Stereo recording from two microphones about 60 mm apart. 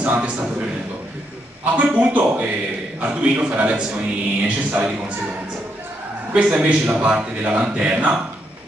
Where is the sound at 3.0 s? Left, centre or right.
Right.